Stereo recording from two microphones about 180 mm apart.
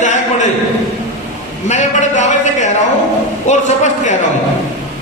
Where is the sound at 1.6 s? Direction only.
40° left (ahead or behind).